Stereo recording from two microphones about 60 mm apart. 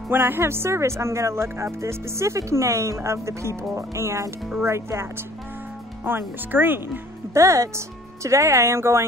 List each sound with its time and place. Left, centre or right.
0.1 s speech: right
6.0 s speech: right
7.3 s speech: right